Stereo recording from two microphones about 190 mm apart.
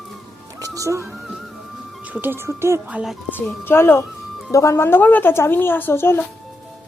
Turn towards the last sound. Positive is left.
turn(degrees=10)  # may be behind; listen again after turning